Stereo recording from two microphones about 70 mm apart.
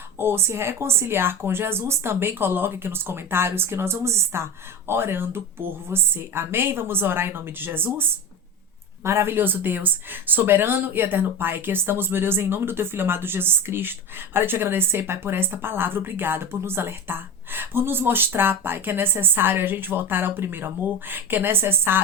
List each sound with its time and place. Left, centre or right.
0.2 s a woman's voice: right
9.0 s a woman's voice: right